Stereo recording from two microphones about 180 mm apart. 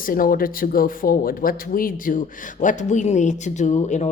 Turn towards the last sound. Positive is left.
turn(degrees=40)  # may be behind; listen again after turning